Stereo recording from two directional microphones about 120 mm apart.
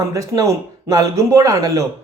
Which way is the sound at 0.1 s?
30° right (ahead or behind).